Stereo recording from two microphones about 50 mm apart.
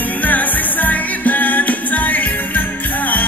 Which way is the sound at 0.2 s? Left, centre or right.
Left.